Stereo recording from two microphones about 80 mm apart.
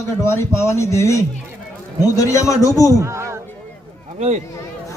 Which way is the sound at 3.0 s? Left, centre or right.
Right.